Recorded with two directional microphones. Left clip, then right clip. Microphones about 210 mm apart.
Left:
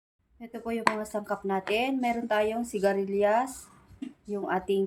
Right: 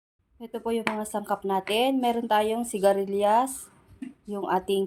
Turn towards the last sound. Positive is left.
turn(degrees=-30)  # may be behind; listen again after turning